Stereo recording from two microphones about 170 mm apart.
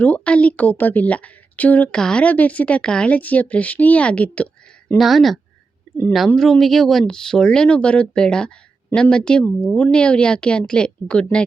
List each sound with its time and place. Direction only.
0.0 s speech: 10° left (ahead or behind)